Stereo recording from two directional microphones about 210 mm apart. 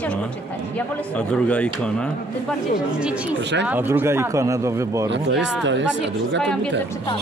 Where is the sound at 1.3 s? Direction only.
5° left (ahead or behind).